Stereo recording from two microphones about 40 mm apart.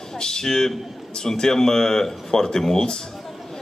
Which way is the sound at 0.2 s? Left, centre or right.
Centre.